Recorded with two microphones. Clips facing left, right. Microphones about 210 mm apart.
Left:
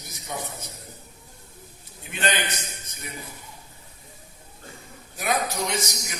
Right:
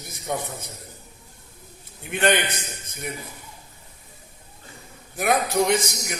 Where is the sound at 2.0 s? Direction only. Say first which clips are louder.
Right 6 dB; 60° right (ahead or behind).